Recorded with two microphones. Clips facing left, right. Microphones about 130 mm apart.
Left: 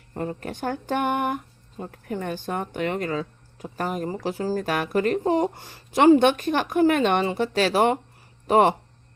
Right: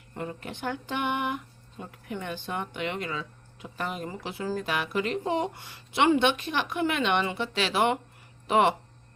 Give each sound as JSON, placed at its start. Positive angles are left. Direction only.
{"t": 0.1, "sound": "speech", "side_deg": 40}